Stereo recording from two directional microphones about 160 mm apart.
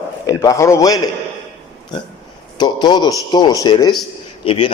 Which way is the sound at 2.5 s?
25° left (ahead or behind).